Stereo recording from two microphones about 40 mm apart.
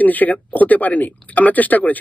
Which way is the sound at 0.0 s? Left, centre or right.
Left.